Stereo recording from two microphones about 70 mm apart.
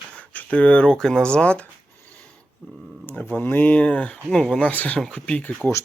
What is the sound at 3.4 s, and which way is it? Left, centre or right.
Speech, left.